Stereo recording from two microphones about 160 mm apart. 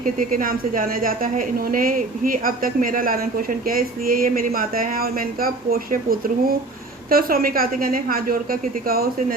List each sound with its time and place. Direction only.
0.0 s a woman's voice: 60° right (ahead or behind)